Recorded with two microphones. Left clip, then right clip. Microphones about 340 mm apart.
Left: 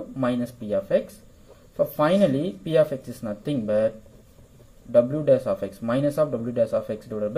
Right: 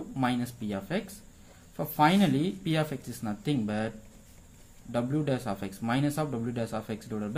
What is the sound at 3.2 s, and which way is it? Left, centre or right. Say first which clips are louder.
A man's voice: left 2 dB; centre.